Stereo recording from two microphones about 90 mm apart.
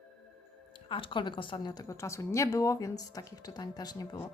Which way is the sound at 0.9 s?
70° left (ahead or behind).